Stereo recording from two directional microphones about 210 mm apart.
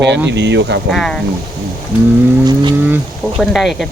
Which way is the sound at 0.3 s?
55° right (ahead or behind).